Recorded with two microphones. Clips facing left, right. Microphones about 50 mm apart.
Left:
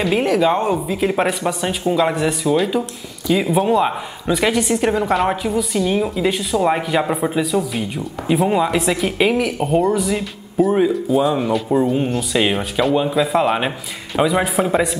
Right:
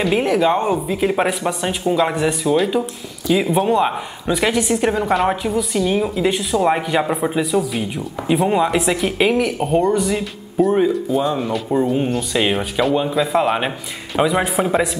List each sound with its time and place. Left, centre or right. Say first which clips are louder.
0.0 s a woman's voice: even; centre